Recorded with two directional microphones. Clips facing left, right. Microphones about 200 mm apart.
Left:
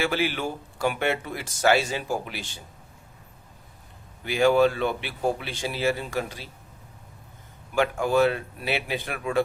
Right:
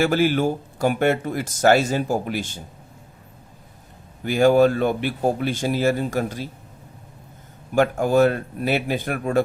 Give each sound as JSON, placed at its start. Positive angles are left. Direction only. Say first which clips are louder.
{"t": 0.0, "sound": "speech", "louder": "right 7 dB", "side_deg": -45}
{"t": 4.2, "sound": "speech", "louder": "right 4 dB", "side_deg": -45}
{"t": 7.8, "sound": "speech", "louder": "right 4 dB", "side_deg": -45}